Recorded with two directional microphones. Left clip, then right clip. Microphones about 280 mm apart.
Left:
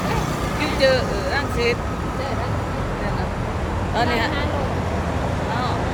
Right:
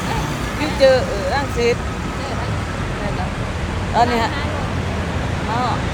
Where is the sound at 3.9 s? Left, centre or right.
Centre.